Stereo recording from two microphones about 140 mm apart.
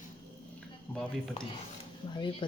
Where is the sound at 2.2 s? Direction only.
35° left (ahead or behind).